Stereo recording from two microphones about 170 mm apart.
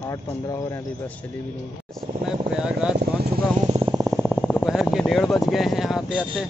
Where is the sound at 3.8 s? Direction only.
20° right (ahead or behind).